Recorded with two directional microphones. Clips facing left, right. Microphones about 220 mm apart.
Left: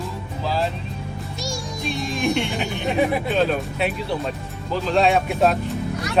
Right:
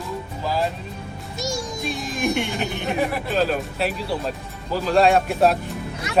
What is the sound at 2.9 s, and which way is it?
Speech, centre (ahead or behind).